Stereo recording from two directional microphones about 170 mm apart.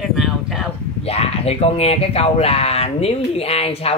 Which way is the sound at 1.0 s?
35° left (ahead or behind).